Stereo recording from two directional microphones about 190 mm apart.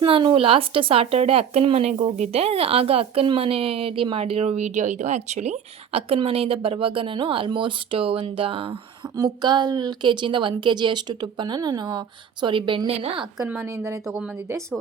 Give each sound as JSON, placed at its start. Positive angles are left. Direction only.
{"t": 0.0, "sound": "speech", "side_deg": -25}
{"t": 13.4, "sound": "speech", "side_deg": -10}